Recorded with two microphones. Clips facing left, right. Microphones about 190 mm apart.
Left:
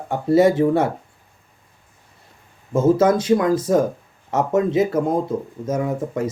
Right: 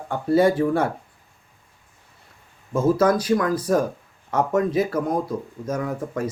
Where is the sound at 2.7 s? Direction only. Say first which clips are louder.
Left 3 dB; 25° left (ahead or behind).